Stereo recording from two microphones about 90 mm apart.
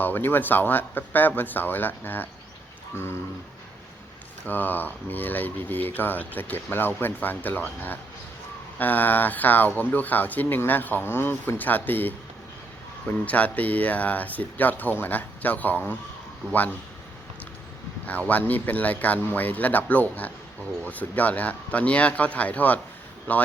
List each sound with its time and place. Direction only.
0.0 s speech: 20° left (ahead or behind)
4.4 s speech: 20° left (ahead or behind)
18.0 s speech: 15° left (ahead or behind)